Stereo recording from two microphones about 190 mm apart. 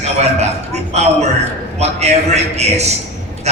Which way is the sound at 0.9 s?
35° right (ahead or behind).